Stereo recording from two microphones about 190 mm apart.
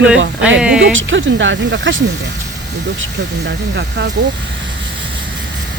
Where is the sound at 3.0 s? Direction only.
65° right (ahead or behind).